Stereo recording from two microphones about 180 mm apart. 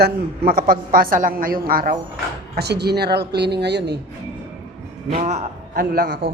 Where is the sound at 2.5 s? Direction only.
65° right (ahead or behind).